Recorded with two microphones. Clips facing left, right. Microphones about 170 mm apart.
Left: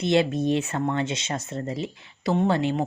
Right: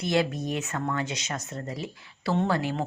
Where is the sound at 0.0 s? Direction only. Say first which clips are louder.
Left 5 dB; 25° left (ahead or behind).